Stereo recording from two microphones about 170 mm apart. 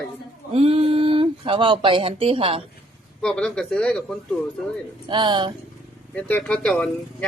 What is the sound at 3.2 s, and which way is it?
Speech, 5° left (ahead or behind).